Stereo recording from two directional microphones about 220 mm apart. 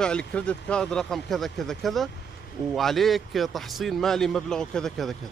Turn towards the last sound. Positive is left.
turn(degrees=5)  # may be behind; listen again after turning